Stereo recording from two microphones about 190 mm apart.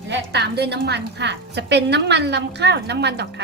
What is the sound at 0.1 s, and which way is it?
A woman's voice, 60° right (ahead or behind).